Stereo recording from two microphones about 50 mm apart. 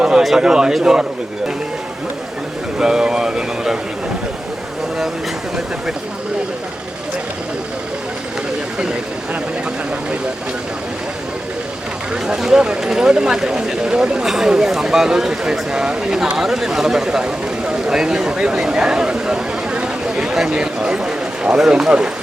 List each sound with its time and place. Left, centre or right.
0.2 s speech: centre
2.7 s speech: centre
12.1 s speech: centre
14.3 s speech: centre